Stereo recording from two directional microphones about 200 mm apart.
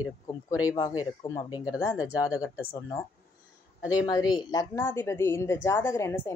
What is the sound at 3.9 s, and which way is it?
A woman's voice, 20° left (ahead or behind).